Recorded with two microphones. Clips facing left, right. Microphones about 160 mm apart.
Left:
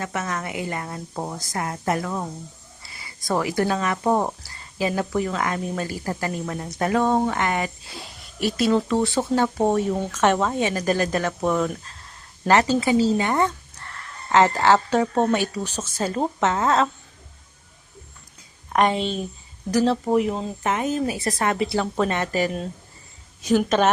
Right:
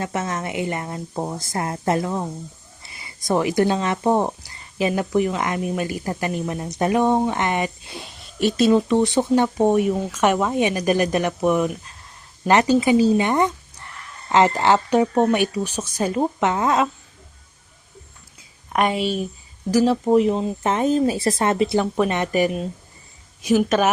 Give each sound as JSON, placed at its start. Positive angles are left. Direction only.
{"t": 0.0, "sound": "speech", "side_deg": -25}
{"t": 1.1, "sound": "speech", "side_deg": -10}
{"t": 1.4, "sound": "speech", "side_deg": -25}
{"t": 18.7, "sound": "speech", "side_deg": -10}
{"t": 20.7, "sound": "speech", "side_deg": -30}